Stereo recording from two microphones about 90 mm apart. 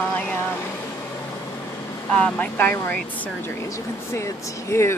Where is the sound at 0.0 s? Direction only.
20° left (ahead or behind).